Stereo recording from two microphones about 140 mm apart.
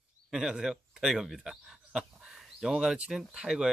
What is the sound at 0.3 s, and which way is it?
Speech, 5° right (ahead or behind).